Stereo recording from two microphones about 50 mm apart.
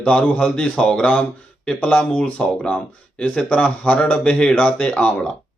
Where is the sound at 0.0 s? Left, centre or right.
Centre.